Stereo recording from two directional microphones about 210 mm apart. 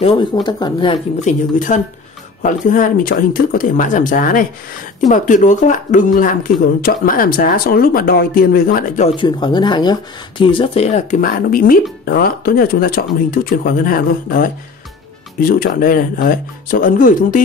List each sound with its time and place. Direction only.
0.0 s speech: 20° left (ahead or behind)
1.2 s speech: 40° left (ahead or behind)
9.1 s speech: 20° left (ahead or behind); by 17.4 s 40° left (ahead or behind)